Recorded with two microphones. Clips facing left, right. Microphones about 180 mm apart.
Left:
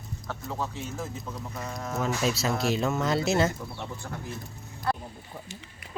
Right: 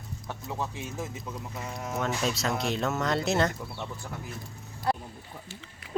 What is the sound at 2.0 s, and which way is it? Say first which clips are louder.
Speech: left 2 dB; 5° left (ahead or behind).